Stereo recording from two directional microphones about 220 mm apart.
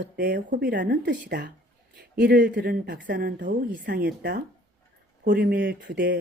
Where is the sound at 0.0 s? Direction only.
40° right (ahead or behind).